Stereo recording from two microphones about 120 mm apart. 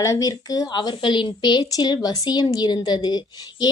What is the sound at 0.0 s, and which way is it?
A woman's voice, 30° left (ahead or behind).